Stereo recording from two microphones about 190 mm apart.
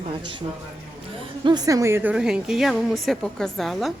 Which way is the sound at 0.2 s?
25° right (ahead or behind).